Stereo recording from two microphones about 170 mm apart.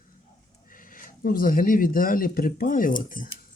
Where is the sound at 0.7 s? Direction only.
55° left (ahead or behind).